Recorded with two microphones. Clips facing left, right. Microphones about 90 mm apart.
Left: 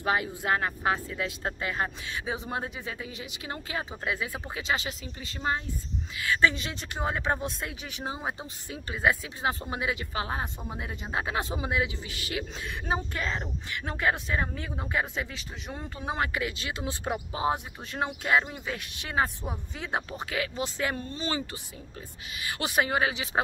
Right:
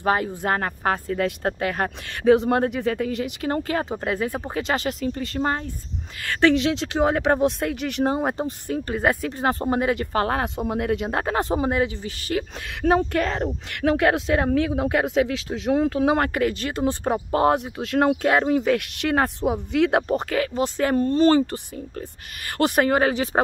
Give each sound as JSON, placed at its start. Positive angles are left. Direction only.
{"t": 0.0, "sound": "speech", "side_deg": -45}
{"t": 12.8, "sound": "speech", "side_deg": -65}
{"t": 16.2, "sound": "speech", "side_deg": -50}
{"t": 17.4, "sound": "speech", "side_deg": -65}
{"t": 18.6, "sound": "speech", "side_deg": -75}
{"t": 20.2, "sound": "speech", "side_deg": -45}
{"t": 22.6, "sound": "speech", "side_deg": -50}